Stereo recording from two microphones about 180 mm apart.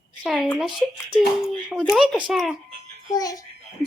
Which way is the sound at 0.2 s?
5° right (ahead or behind).